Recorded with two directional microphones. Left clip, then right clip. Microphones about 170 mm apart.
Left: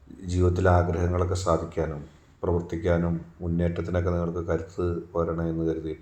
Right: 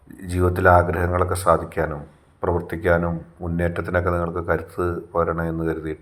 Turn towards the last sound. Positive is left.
turn(degrees=-5)  # may be behind; listen again after turning